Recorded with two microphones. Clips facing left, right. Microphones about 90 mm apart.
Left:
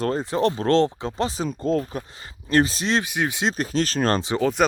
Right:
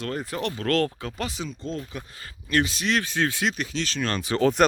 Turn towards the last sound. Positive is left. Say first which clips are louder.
# right 1 dB
turn(degrees=0)  # may be behind; listen again after turning